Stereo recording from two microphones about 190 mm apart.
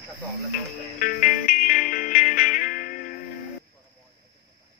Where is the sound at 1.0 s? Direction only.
45° left (ahead or behind).